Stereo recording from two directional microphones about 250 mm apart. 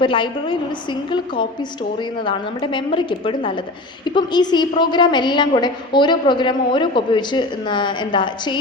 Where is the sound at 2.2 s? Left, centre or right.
Centre.